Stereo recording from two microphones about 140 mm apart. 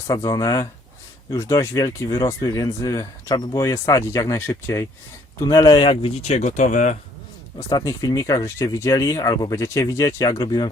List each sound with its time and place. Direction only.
0.1 s speech: 25° left (ahead or behind); by 6.9 s 65° left (ahead or behind)
7.7 s speech: 25° left (ahead or behind)